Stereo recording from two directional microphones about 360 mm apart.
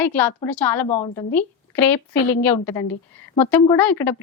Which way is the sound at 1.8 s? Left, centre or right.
Left.